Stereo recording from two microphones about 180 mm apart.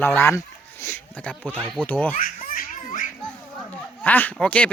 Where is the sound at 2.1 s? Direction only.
50° left (ahead or behind).